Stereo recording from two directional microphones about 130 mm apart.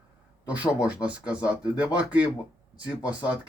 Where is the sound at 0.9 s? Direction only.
10° right (ahead or behind).